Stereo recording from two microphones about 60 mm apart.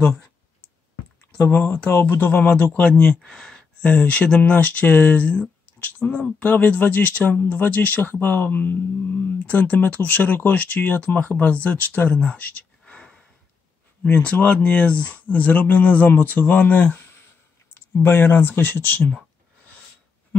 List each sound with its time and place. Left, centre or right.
1.4 s speech: left
2.7 s speech: centre